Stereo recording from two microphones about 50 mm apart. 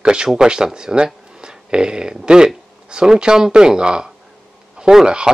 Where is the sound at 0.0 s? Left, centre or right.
Centre.